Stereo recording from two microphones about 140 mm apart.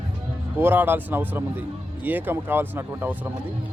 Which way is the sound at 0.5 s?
15° right (ahead or behind).